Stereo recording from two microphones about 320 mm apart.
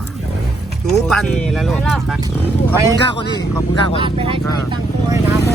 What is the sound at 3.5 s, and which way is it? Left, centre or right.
Speech, centre.